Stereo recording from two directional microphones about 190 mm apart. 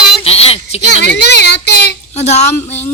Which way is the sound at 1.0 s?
60° left (ahead or behind).